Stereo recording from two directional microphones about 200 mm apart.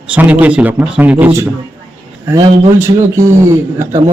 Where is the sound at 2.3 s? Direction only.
20° right (ahead or behind).